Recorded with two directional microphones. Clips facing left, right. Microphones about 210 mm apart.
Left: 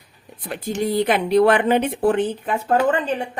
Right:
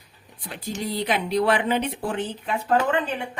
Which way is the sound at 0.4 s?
55° left (ahead or behind).